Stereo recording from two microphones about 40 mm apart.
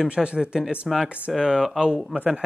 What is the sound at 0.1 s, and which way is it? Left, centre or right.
Speech, right.